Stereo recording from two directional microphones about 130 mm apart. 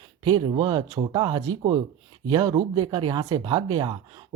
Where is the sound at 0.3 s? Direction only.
40° right (ahead or behind).